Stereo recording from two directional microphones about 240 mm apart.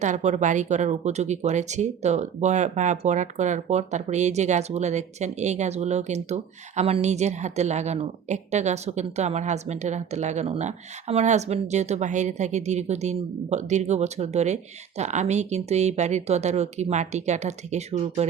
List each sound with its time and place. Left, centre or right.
0.0 s speech: right